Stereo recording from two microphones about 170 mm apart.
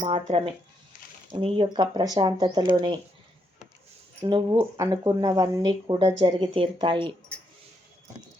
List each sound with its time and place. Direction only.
0.3 s speech: 35° right (ahead or behind)
4.2 s speech: 25° right (ahead or behind)
4.5 s speech: 15° right (ahead or behind)
6.0 s speech: 30° right (ahead or behind)